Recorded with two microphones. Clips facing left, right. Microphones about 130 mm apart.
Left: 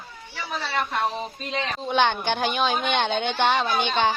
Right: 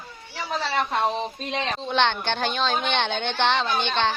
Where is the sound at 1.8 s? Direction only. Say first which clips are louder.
Left 2 dB; 10° left (ahead or behind).